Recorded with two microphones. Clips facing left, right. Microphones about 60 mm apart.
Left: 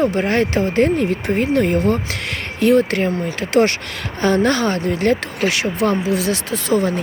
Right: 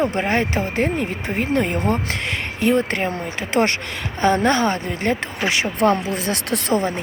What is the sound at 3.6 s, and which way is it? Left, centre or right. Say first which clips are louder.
Speech: left 4 dB; centre.